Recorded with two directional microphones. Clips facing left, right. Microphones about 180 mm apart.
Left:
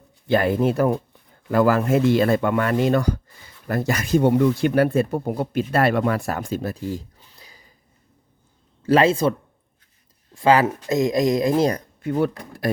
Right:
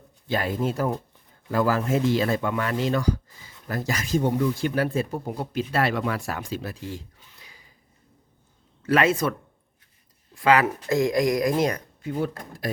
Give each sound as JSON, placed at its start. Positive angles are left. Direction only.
{"t": 0.3, "sound": "speech", "side_deg": 60}
{"t": 8.8, "sound": "speech", "side_deg": 30}
{"t": 10.3, "sound": "speech", "side_deg": 30}
{"t": 12.0, "sound": "speech", "side_deg": 65}